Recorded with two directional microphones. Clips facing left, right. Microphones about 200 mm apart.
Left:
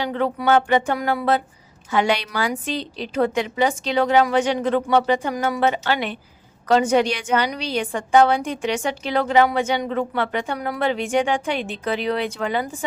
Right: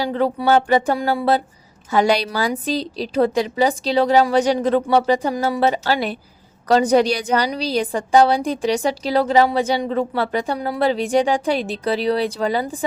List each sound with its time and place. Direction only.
0.0 s a woman's voice: 35° right (ahead or behind)